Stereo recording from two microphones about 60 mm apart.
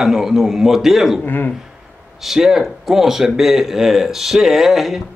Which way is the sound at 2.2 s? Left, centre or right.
Centre.